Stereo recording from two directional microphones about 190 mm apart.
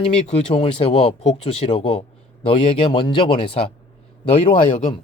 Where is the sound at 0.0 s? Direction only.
30° left (ahead or behind).